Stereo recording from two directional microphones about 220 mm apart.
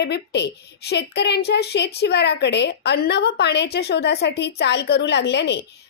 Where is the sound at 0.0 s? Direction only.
50° left (ahead or behind).